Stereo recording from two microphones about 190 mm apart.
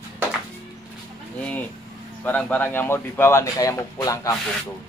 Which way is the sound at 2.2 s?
10° left (ahead or behind).